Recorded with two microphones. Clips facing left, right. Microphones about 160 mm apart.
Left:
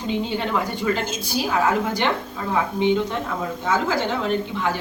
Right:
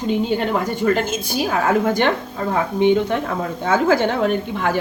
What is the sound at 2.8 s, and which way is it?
A woman's voice, 55° right (ahead or behind).